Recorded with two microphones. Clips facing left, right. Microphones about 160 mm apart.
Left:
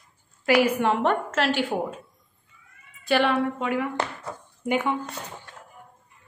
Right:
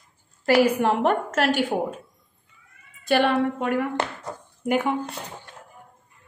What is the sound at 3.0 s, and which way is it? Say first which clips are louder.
A woman's voice: right 2 dB; 50° right (ahead or behind).